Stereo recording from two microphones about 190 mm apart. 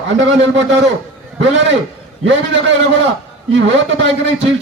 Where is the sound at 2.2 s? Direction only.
75° right (ahead or behind).